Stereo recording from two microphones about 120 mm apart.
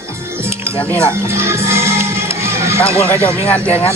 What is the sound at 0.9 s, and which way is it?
Music, 20° right (ahead or behind).